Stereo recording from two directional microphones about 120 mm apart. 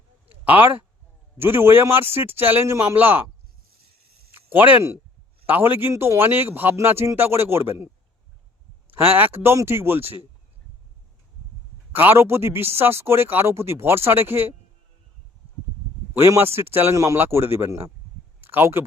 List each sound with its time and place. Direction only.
0.3 s a sound: 15° right (ahead or behind)
1.4 s speech: 20° right (ahead or behind)
4.4 s speech: 15° right (ahead or behind)
8.9 s speech: 15° right (ahead or behind)
11.9 s speech: 15° right (ahead or behind)
16.1 s speech: 20° right (ahead or behind)